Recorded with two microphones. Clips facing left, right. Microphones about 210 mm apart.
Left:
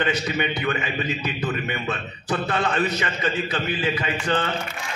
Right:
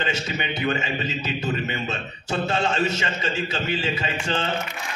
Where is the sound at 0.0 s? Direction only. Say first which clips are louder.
Left 4 dB; 25° right (ahead or behind).